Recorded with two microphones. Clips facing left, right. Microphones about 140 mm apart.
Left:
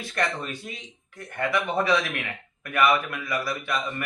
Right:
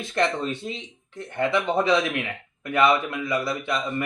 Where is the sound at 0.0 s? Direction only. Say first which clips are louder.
Right 4 dB; 25° right (ahead or behind).